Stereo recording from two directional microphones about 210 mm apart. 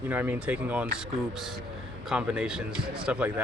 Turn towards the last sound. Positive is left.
turn(degrees=-5)  # may be behind; listen again after turning